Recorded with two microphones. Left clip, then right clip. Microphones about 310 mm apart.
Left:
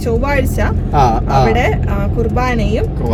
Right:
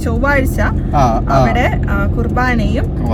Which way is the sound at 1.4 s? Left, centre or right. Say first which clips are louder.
Left 1 dB; left.